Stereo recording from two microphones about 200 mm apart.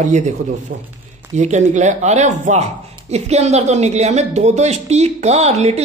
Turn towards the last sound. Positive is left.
turn(degrees=-35)  # may be behind; listen again after turning